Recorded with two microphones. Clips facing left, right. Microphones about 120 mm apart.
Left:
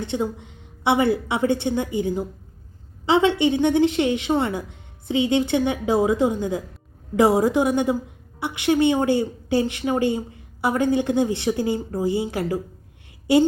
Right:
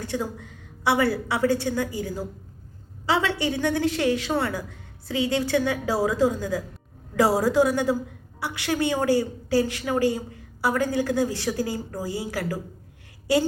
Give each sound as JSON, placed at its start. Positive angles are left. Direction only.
{"t": 0.0, "sound": "a woman's voice", "side_deg": 20}